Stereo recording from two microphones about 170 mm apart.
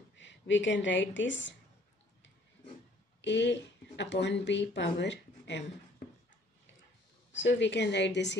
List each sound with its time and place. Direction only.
0.1 s a woman's voice: 90° left
3.2 s speech: 90° left
7.3 s speech: 90° left